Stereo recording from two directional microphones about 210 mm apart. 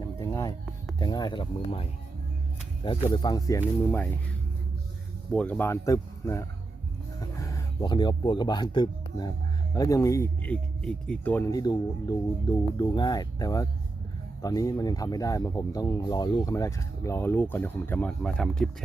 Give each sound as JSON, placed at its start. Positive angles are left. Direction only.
{"t": 0.0, "sound": "music", "side_deg": 15}
{"t": 0.9, "sound": "speech", "side_deg": 20}
{"t": 5.3, "sound": "speech", "side_deg": 5}